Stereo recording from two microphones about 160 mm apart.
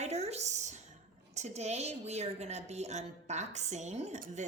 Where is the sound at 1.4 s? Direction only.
45° right (ahead or behind).